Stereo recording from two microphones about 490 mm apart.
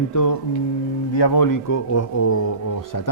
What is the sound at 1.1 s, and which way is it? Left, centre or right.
Speech, left.